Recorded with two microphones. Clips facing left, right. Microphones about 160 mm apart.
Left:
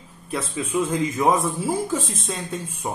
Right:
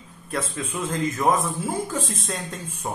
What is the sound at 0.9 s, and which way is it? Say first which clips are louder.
Speech: even; 10° left (ahead or behind).